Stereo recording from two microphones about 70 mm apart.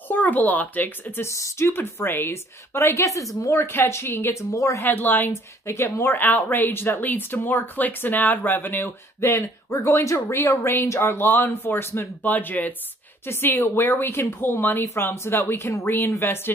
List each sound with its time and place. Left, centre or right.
0.1 s speech: left
1.2 s speech: left
1.7 s speech: left
3.7 s speech: left
4.8 s speech: left
5.7 s speech: left
6.1 s speech: left
9.2 s speech: left